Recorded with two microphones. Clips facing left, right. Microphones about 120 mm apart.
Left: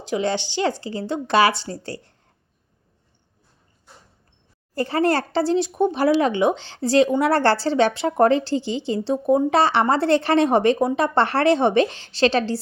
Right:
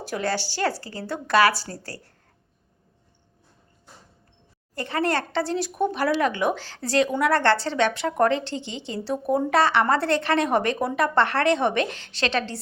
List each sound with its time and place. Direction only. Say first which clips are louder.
0.0 s a woman's voice: left 4 dB; 20° left (ahead or behind)
4.7 s a woman's voice: left 5 dB; 35° left (ahead or behind)